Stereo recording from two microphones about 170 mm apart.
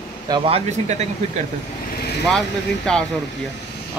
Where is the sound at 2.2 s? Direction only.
5° left (ahead or behind).